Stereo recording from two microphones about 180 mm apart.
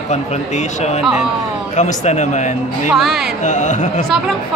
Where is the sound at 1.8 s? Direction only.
40° left (ahead or behind).